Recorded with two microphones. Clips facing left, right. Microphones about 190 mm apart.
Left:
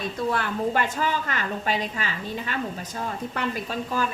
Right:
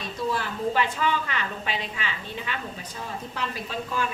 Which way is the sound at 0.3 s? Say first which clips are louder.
Left 1 dB; 60° left (ahead or behind).